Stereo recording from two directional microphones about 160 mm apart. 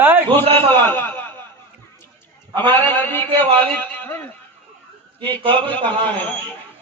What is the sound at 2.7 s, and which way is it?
A woman's voice, 15° left (ahead or behind).